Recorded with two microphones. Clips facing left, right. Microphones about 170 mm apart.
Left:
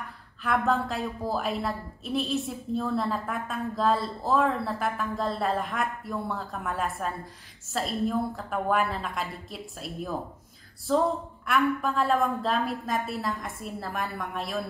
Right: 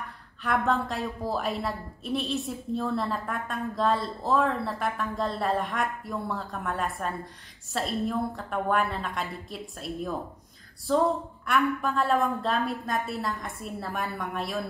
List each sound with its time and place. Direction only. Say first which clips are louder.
0.4 s a woman's voice: even; centre (ahead or behind)